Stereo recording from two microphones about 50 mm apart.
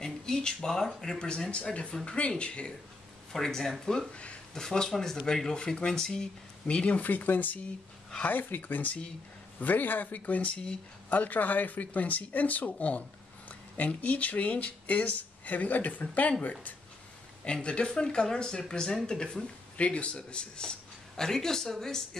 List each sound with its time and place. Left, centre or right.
0.0 s speech: centre
3.3 s speech: centre
4.1 s speech: left
4.6 s speech: centre
7.0 s speech: left; by 10.8 s centre
11.1 s speech: left
17.5 s speech: centre